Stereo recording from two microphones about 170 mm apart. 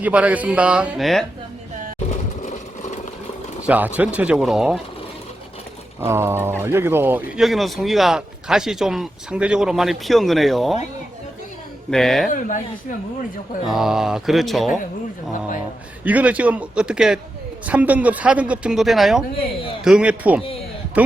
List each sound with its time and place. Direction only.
0.0 s a man's voice: 10° right (ahead or behind)
2.0 s vehicle: 45° left (ahead or behind)
3.7 s a man's voice: 10° right (ahead or behind)
6.1 s speech: 15° right (ahead or behind)
11.9 s speech: centre (ahead or behind)
12.3 s speech: 50° left (ahead or behind)
13.7 s speech: centre (ahead or behind)
16.0 s a man's voice: 10° right (ahead or behind)